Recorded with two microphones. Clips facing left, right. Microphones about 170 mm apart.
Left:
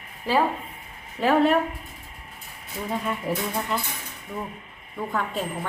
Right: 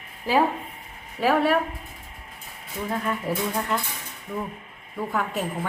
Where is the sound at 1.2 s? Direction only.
5° right (ahead or behind).